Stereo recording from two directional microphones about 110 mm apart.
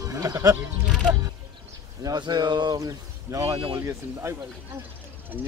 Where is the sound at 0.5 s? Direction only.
10° right (ahead or behind).